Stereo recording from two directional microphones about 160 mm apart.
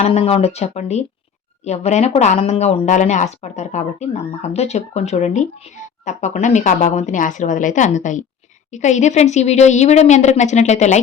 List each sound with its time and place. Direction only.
0.0 s speech: 40° left (ahead or behind)